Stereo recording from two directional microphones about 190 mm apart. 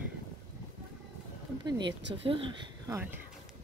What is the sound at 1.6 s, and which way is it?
Speech, 25° right (ahead or behind).